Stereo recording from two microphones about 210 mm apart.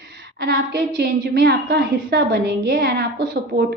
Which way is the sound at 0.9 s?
45° right (ahead or behind).